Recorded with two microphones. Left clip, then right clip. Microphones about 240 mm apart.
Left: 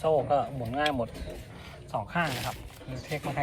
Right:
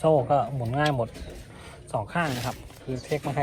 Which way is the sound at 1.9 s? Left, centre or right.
Right.